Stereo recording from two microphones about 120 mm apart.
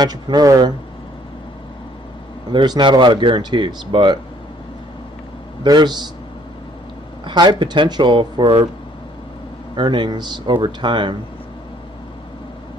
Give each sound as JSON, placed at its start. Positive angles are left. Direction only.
{"t": 0.0, "sound": "speech", "side_deg": -35}
{"t": 2.5, "sound": "speech", "side_deg": -40}
{"t": 5.6, "sound": "speech", "side_deg": -35}
{"t": 7.2, "sound": "speech", "side_deg": -40}
{"t": 9.8, "sound": "speech", "side_deg": -40}